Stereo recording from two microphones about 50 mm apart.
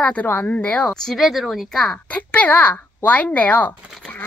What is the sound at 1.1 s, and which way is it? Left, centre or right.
Speech, centre.